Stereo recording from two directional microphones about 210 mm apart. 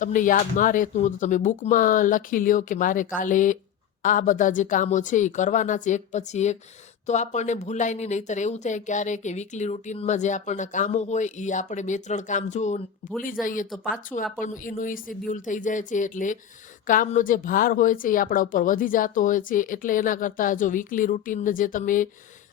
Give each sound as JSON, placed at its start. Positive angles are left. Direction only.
{"t": 0.0, "sound": "speech", "side_deg": 40}